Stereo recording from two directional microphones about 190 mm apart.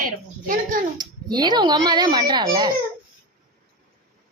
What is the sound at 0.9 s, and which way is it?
A child's voice, 20° right (ahead or behind).